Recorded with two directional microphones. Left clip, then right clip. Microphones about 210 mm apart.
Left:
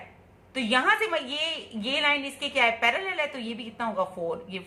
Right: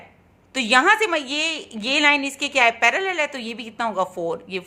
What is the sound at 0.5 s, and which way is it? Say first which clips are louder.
A woman's voice: right 7 dB; 55° right (ahead or behind).